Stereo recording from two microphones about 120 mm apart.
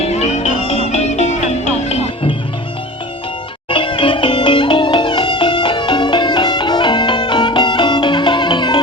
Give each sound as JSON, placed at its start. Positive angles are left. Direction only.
{"t": 0.0, "sound": "music", "side_deg": 60}
{"t": 3.7, "sound": "music", "side_deg": 45}